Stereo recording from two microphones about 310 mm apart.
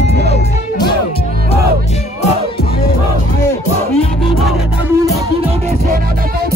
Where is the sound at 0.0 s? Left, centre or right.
Left.